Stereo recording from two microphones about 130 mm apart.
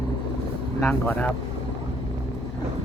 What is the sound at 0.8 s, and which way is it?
Speech, 10° left (ahead or behind).